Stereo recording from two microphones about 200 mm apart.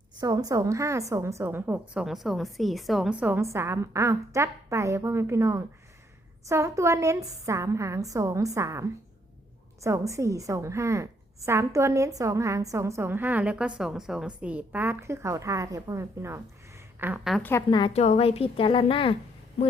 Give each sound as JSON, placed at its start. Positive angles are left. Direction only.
{"t": 0.2, "sound": "a woman's voice", "side_deg": -20}
{"t": 17.7, "sound": "speech", "side_deg": 25}